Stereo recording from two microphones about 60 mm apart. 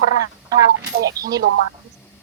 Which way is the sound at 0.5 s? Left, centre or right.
Right.